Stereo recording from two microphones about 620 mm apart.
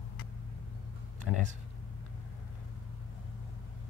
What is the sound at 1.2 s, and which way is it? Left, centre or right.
Speech, left.